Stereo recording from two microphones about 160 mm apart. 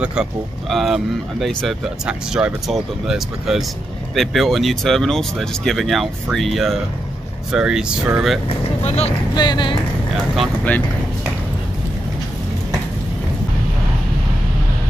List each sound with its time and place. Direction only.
0.0 s speech: 5° right (ahead or behind)
8.5 s speech: 40° left (ahead or behind)
9.3 s speech: 25° left (ahead or behind)
10.3 s speech: centre (ahead or behind)